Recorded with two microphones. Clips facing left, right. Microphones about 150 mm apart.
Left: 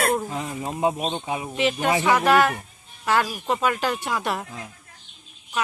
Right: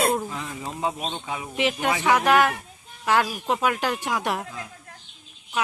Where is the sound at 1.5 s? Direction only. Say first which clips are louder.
Left 2 dB; 10° right (ahead or behind).